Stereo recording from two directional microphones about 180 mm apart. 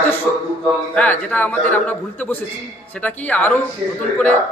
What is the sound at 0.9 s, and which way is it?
A man's voice, 10° left (ahead or behind).